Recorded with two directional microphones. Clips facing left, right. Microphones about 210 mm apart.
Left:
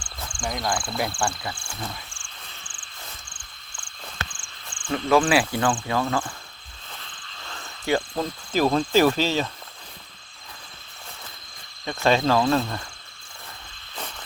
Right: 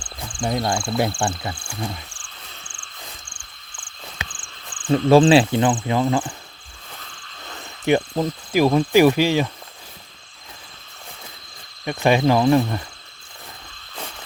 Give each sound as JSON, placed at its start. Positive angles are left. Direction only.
{"t": 0.3, "sound": "speech", "side_deg": -25}
{"t": 4.4, "sound": "cricket", "side_deg": -55}
{"t": 4.9, "sound": "speech", "side_deg": -30}
{"t": 7.4, "sound": "speech", "side_deg": -20}
{"t": 11.9, "sound": "speech", "side_deg": -15}